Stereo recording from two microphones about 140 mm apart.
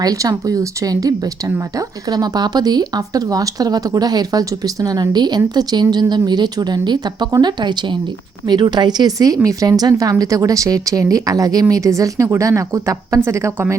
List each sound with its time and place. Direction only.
0.0 s speech: 25° right (ahead or behind)